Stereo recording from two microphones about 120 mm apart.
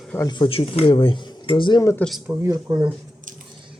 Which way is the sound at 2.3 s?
30° right (ahead or behind).